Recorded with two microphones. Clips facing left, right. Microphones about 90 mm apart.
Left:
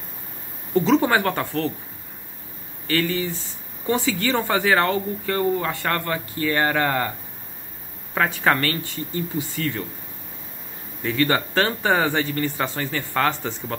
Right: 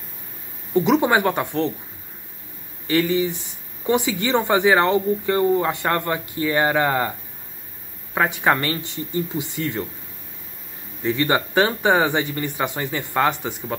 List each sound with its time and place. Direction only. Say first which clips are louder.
0.7 s speech: right 1 dB; 15° right (ahead or behind)
2.9 s speech: right 4 dB; 15° right (ahead or behind)
8.1 s speech: right 1 dB; 15° right (ahead or behind)
11.0 s speech: right 1 dB; 20° right (ahead or behind)